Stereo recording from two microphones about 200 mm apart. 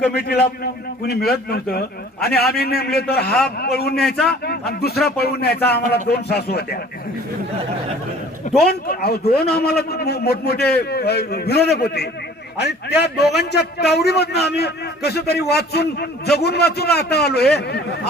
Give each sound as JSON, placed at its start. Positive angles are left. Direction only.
{"t": 0.1, "sound": "a man's voice", "side_deg": 55}
{"t": 3.2, "sound": "a man's voice", "side_deg": 5}
{"t": 3.6, "sound": "a man's voice", "side_deg": 50}
{"t": 8.5, "sound": "a man's voice", "side_deg": 50}